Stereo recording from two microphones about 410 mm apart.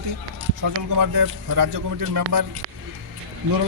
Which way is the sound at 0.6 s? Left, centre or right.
Right.